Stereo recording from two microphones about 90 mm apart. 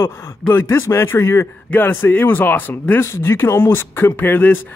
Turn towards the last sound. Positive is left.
turn(degrees=25)  # may be behind; listen again after turning